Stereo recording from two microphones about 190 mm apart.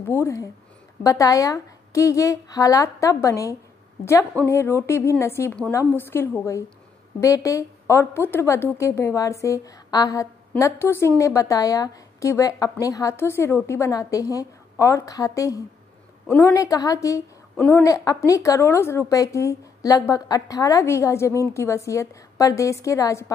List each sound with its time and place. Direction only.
0.1 s a woman's voice: 15° left (ahead or behind)